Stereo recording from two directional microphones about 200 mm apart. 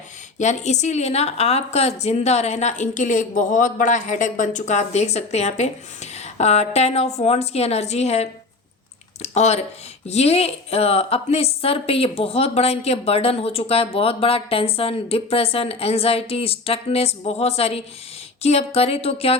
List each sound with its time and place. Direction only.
0.3 s a woman's voice: 35° left (ahead or behind)